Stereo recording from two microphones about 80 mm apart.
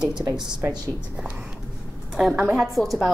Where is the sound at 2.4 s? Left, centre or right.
Centre.